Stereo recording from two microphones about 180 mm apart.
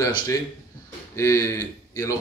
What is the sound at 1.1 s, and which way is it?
Speech, 15° left (ahead or behind).